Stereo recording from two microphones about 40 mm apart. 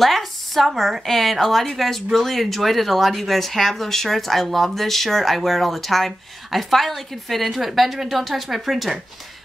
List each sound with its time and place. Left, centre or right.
0.0 s speech: centre